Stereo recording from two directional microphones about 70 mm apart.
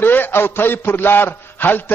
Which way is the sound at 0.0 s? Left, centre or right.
Left.